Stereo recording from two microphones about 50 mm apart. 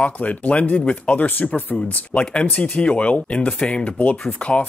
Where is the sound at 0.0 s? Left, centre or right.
Left.